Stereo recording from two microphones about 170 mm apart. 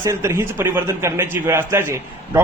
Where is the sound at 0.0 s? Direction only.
15° right (ahead or behind).